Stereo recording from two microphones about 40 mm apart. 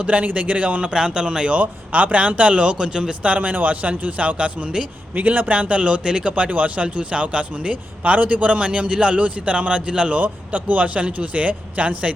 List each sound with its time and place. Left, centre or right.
0.0 s speech: right
1.5 s speech: right
5.1 s speech: right
5.5 s speech: right
8.1 s speech: right
10.2 s speech: right